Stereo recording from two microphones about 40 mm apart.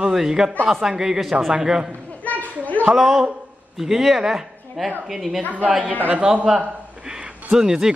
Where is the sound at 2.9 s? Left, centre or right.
Centre.